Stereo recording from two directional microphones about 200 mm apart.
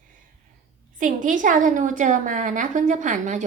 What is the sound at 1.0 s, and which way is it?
A woman's voice, 40° right (ahead or behind).